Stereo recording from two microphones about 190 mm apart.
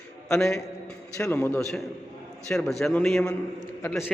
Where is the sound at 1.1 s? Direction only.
15° left (ahead or behind).